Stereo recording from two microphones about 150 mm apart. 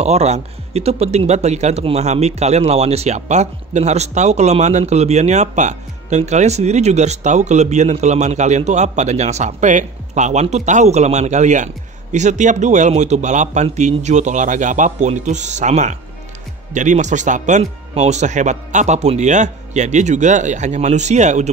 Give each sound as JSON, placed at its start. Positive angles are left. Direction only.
{"t": 0.0, "sound": "speech", "side_deg": -45}